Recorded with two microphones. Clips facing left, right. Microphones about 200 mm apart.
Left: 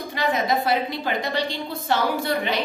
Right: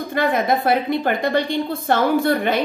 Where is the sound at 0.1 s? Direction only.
55° right (ahead or behind).